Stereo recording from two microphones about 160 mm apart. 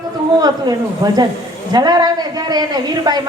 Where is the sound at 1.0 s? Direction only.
25° right (ahead or behind).